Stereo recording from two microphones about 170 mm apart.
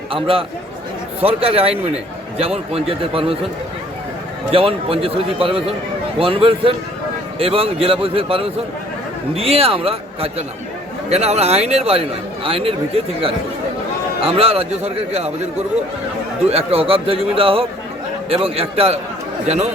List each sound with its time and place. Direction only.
0.1 s a man's voice: 30° right (ahead or behind)
4.5 s a man's voice: 35° right (ahead or behind)
14.2 s a man's voice: 35° right (ahead or behind)
16.5 s a man's voice: 35° right (ahead or behind)